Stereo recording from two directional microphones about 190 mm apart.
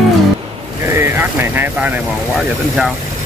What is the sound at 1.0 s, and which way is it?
Vehicle, 10° right (ahead or behind).